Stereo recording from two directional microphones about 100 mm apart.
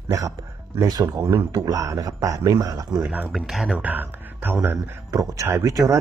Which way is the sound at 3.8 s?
20° right (ahead or behind).